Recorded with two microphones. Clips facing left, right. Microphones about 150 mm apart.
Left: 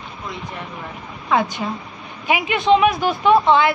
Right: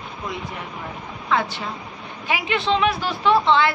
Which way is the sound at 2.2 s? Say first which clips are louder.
Left 5 dB; 15° left (ahead or behind).